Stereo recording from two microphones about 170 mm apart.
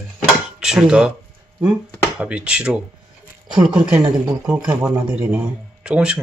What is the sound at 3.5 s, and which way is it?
Speech, 25° right (ahead or behind).